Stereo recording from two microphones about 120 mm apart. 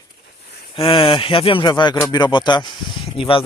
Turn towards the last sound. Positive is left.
turn(degrees=45)  # may be behind; listen again after turning